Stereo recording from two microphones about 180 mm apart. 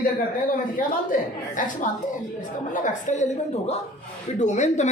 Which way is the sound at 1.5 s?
45° left (ahead or behind).